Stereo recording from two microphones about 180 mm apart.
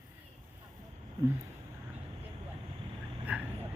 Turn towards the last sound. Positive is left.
turn(degrees=-10)  # may be behind; listen again after turning